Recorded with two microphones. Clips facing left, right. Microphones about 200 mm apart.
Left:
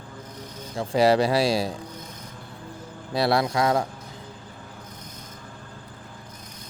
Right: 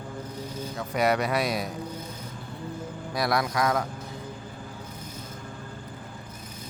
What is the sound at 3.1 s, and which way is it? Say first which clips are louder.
Speech: left 4 dB; 30° left (ahead or behind).